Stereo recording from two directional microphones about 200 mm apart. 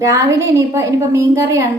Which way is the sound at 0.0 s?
15° right (ahead or behind).